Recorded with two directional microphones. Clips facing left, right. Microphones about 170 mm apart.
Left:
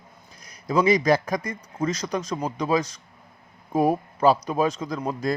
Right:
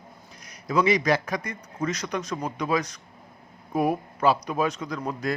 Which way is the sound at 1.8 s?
30° left (ahead or behind).